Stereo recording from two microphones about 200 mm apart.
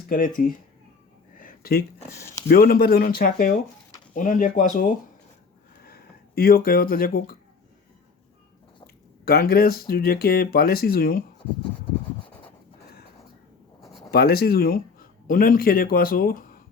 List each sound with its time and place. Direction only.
0.1 s speech: 45° left (ahead or behind)
1.4 s a sound: 45° left (ahead or behind)
2.5 s speech: 45° left (ahead or behind)
9.2 s speech: 50° left (ahead or behind)
14.1 s speech: 50° left (ahead or behind)